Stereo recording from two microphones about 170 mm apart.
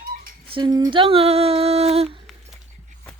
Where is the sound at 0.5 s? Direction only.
25° right (ahead or behind).